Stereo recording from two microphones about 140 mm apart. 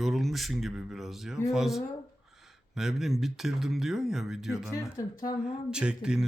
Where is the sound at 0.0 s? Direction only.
Centre (ahead or behind).